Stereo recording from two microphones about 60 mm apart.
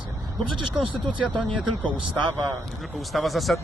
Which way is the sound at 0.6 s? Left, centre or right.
Centre.